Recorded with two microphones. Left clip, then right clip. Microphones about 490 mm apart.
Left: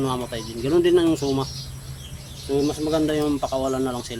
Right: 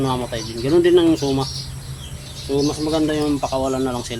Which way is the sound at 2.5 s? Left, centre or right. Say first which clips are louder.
Right 2 dB; left.